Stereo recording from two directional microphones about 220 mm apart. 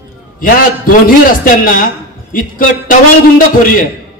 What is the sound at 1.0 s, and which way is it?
A man's voice, 40° left (ahead or behind).